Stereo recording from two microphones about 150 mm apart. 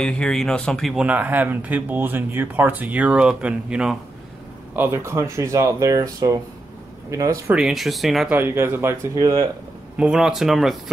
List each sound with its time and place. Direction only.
0.0 s speech: 5° left (ahead or behind)
1.0 s speech: 10° right (ahead or behind)
7.5 s speech: centre (ahead or behind)
8.3 s speech: 15° right (ahead or behind)
9.9 s speech: 5° right (ahead or behind)